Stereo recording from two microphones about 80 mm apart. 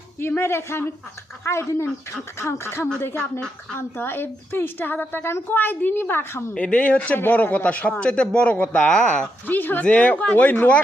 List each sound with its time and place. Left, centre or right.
0.2 s a woman's voice: left
6.5 s speech: centre